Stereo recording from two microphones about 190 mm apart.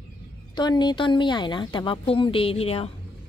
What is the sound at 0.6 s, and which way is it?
A woman's voice, 20° left (ahead or behind).